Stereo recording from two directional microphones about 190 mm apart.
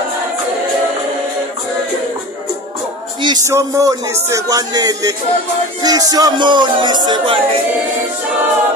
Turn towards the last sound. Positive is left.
turn(degrees=-25)  # may be behind; listen again after turning